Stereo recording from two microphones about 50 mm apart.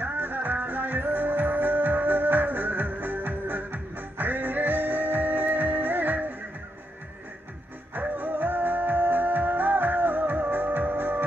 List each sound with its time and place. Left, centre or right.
0.0 s music: right
7.9 s music: right